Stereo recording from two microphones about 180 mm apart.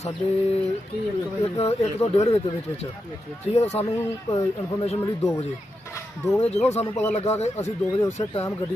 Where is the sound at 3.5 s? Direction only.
40° left (ahead or behind).